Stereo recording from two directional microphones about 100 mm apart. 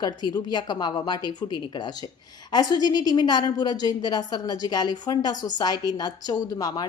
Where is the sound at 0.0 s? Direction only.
45° left (ahead or behind).